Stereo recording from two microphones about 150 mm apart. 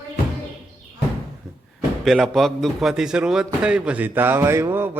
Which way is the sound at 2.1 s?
Centre (ahead or behind).